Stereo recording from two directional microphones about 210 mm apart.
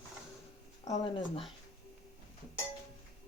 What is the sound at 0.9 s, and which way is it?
Speech, 20° left (ahead or behind).